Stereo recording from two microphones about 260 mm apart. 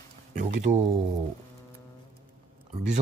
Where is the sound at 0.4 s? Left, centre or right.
Right.